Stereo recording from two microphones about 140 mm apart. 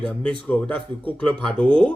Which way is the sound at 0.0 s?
5° left (ahead or behind).